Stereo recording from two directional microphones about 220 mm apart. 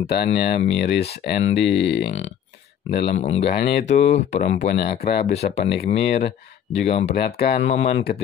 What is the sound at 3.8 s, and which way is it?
Speech, 30° left (ahead or behind).